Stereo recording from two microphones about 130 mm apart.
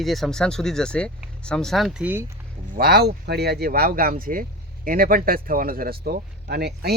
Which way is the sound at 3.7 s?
90° right.